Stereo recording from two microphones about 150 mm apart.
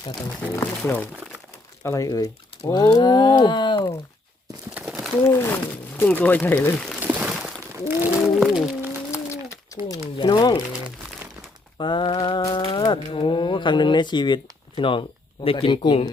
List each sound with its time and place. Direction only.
0.5 s speech: 10° left (ahead or behind); by 3.9 s 30° left (ahead or behind)
4.7 s crumpling: centre (ahead or behind)
5.3 s speech: 15° left (ahead or behind)
7.1 s a sound: 5° right (ahead or behind)
8.4 s music: 5° right (ahead or behind)
9.9 s speech: 30° left (ahead or behind)
11.8 s speech: 35° left (ahead or behind)